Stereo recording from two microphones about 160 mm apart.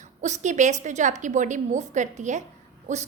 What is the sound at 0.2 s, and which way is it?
A woman's voice, 50° right (ahead or behind).